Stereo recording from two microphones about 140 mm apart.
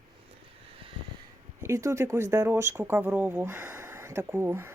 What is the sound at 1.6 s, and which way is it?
Speech, 20° right (ahead or behind).